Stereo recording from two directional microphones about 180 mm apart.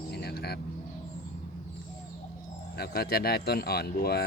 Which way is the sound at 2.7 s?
60° left (ahead or behind).